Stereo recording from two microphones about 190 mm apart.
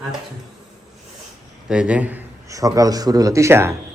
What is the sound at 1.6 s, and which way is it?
A man's voice, 5° right (ahead or behind).